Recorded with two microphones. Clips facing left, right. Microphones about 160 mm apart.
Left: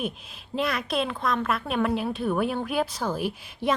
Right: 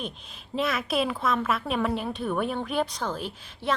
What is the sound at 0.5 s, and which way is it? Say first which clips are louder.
A woman's voice: even; centre (ahead or behind).